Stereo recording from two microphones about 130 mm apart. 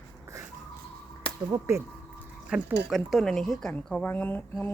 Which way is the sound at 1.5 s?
20° right (ahead or behind).